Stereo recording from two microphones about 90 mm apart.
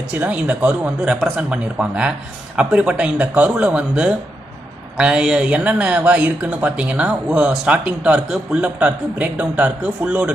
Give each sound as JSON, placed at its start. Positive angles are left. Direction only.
{"t": 0.2, "sound": "speech", "side_deg": -15}